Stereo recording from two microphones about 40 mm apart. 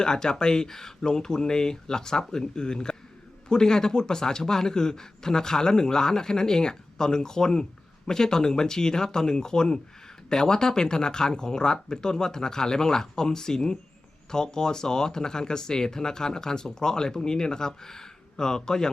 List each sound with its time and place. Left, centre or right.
0.0 s a man's voice: centre